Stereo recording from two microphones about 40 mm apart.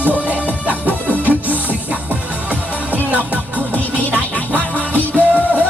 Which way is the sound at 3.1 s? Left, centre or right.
Right.